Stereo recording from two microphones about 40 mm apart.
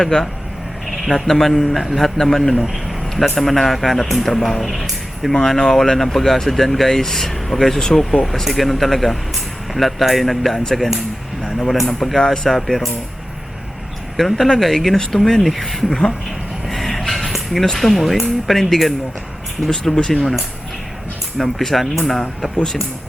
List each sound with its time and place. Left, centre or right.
0.0 s speech: centre
0.9 s speech: centre
5.3 s speech: centre
8.2 s speech: centre
12.2 s speech: centre
14.2 s speech: centre
16.6 s a sound: centre
17.7 s speech: centre
19.7 s speech: centre
21.3 s speech: centre